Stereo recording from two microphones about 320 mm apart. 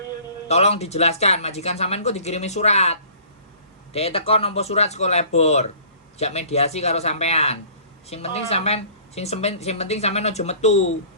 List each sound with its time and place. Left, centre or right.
0.4 s a woman's voice: centre